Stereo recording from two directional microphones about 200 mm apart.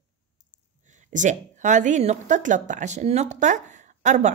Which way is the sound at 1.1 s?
40° right (ahead or behind).